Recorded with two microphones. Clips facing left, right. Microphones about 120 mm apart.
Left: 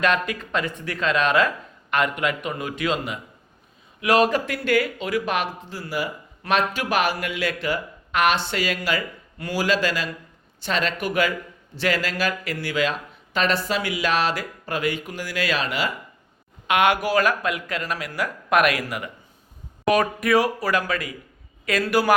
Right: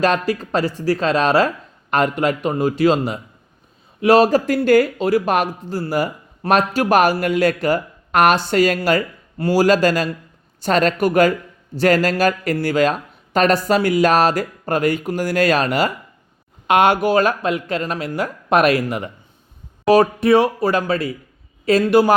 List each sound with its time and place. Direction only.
0.0 s speech: 35° right (ahead or behind)
16.6 s speech: 35° right (ahead or behind)